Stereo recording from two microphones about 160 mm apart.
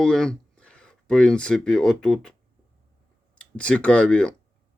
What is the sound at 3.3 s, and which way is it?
Speech, 5° left (ahead or behind).